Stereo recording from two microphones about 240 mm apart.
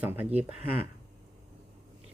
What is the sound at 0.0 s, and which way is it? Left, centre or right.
Speech, centre.